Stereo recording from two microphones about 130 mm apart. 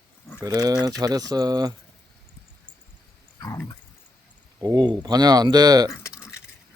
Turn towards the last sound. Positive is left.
turn(degrees=-30)  # may be behind; listen again after turning